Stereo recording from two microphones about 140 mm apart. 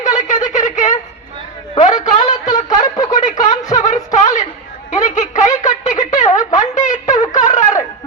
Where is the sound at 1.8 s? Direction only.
55° left (ahead or behind).